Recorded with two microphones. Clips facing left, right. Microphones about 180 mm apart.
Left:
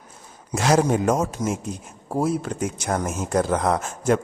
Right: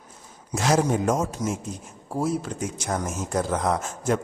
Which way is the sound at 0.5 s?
65° left (ahead or behind).